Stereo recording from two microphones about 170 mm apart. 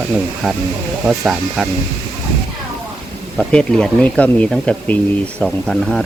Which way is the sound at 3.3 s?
5° left (ahead or behind).